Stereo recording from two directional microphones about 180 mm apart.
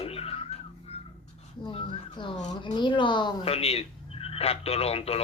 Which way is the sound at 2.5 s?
25° left (ahead or behind).